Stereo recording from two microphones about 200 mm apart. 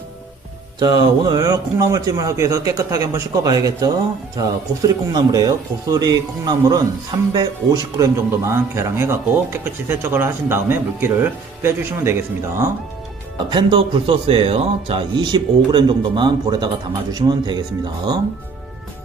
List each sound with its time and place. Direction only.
0.7 s speech: 20° right (ahead or behind)
13.5 s speech: 25° right (ahead or behind)